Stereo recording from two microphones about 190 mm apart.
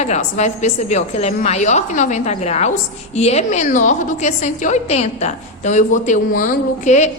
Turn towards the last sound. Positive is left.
turn(degrees=40)  # may be behind; listen again after turning